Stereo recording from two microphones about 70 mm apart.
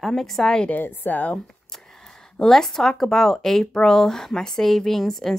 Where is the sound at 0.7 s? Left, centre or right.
Left.